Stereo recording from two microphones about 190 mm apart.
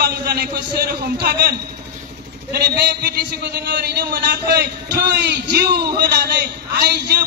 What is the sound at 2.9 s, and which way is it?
A man's voice, 60° right (ahead or behind).